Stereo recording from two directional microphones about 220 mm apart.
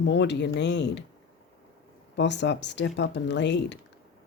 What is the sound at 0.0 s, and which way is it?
Speech, 50° left (ahead or behind).